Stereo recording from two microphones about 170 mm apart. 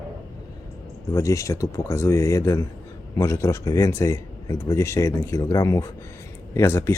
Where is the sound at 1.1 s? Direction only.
20° left (ahead or behind).